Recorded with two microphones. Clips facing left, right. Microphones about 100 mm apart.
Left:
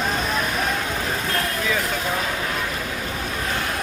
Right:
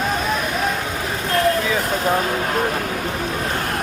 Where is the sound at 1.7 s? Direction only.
35° right (ahead or behind); by 2.8 s 50° right (ahead or behind).